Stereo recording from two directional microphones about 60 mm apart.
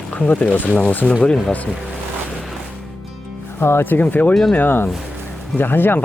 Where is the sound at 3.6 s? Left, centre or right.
Left.